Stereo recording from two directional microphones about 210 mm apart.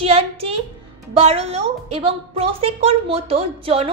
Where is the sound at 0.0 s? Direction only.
30° right (ahead or behind).